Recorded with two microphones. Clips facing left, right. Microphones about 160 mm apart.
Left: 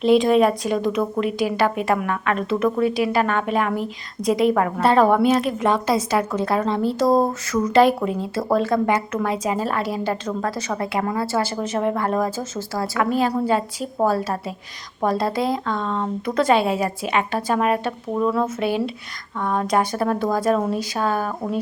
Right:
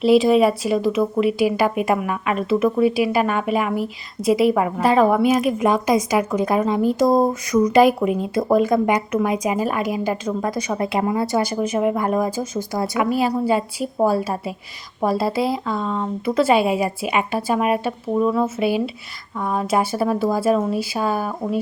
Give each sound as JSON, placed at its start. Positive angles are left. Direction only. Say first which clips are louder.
{"t": 0.0, "sound": "a woman's voice", "louder": "right 1 dB", "side_deg": -5}